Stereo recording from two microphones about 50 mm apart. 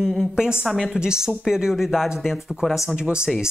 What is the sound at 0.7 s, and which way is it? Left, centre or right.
Speech, centre.